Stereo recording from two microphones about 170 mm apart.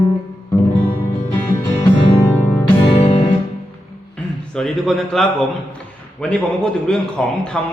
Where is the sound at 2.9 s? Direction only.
35° left (ahead or behind).